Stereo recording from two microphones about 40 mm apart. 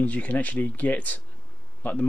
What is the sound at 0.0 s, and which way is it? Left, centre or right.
Speech, left.